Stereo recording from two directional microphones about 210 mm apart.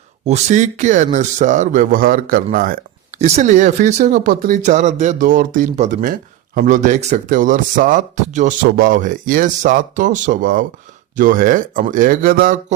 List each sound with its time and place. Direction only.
0.3 s speech: 35° right (ahead or behind)